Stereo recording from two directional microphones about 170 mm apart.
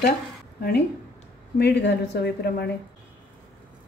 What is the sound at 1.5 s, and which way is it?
A woman's voice, 85° left.